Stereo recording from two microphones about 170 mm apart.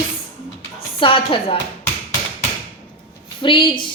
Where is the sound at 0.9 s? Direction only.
30° left (ahead or behind).